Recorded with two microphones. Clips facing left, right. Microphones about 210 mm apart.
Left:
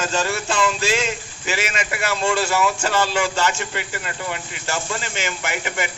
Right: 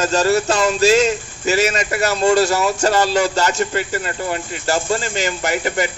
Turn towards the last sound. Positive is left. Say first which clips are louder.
# right 6 dB
turn(degrees=-40)  # may be behind; listen again after turning